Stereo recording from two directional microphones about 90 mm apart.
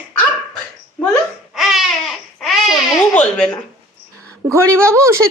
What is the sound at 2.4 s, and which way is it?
Babbling, centre (ahead or behind).